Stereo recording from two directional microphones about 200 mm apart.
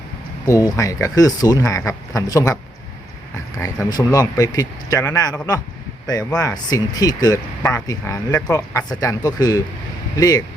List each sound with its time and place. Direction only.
0.4 s speech: 15° left (ahead or behind)
3.6 s speech: 15° left (ahead or behind)